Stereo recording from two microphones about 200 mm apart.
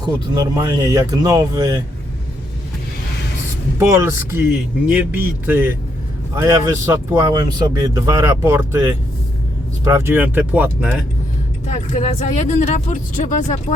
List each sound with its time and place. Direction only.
0.0 s speech: 20° right (ahead or behind)
3.8 s speech: 15° right (ahead or behind)
11.7 s speech: 35° left (ahead or behind)